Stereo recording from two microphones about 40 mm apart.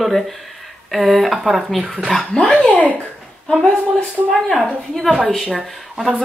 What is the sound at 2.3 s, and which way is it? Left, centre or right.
Speech, left.